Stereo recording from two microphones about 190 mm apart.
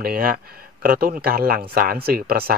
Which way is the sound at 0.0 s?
50° right (ahead or behind).